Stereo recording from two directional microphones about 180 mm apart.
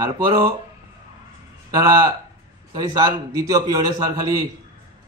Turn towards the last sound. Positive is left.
turn(degrees=-20)  # may be behind; listen again after turning